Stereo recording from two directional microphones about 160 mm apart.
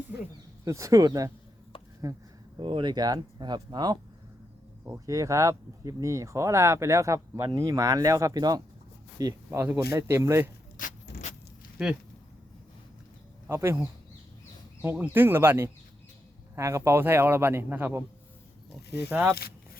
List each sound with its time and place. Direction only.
0.6 s speech: 20° right (ahead or behind)
2.6 s a man's voice: 30° right (ahead or behind); by 10.5 s 15° right (ahead or behind)
10.8 s vehicle: 60° left (ahead or behind)
13.5 s a man's voice: 15° right (ahead or behind)
19.0 s a man's voice: 15° right (ahead or behind)